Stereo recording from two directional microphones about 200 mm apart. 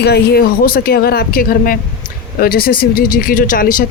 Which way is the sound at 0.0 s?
50° left (ahead or behind).